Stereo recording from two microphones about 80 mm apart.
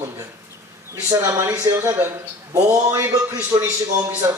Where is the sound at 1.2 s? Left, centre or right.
Right.